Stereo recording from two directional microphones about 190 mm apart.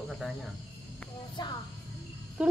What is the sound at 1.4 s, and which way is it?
Speech, 25° left (ahead or behind).